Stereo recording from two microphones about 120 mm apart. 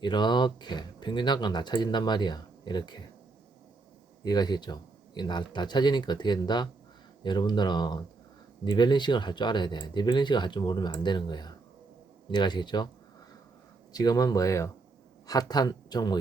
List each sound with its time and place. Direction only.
0.0 s speech: 40° left (ahead or behind)
4.2 s speech: 35° left (ahead or behind)
13.9 s speech: 30° left (ahead or behind)